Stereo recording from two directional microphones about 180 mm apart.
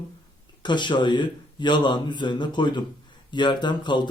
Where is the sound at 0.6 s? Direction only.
25° left (ahead or behind).